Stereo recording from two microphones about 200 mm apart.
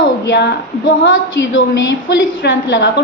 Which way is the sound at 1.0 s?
75° left (ahead or behind).